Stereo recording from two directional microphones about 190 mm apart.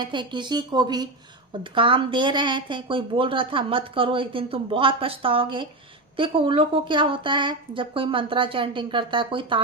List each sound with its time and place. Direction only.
0.0 s a woman's voice: 25° right (ahead or behind)